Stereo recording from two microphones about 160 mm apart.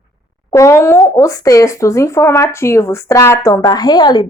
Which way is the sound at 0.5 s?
20° left (ahead or behind).